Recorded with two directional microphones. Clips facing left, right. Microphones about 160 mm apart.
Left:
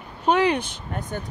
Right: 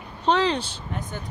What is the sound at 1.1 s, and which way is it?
Speech, 50° left (ahead or behind).